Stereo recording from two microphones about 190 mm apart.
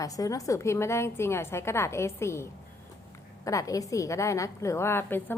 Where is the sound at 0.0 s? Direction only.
15° left (ahead or behind).